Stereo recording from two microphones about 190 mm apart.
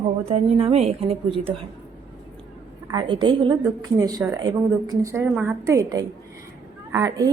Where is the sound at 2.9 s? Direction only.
25° right (ahead or behind).